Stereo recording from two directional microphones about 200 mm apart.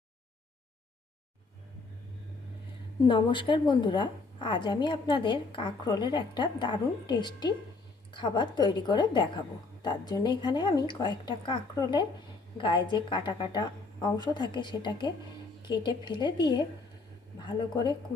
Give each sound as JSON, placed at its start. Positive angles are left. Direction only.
{"t": 3.1, "sound": "a woman's voice", "side_deg": 25}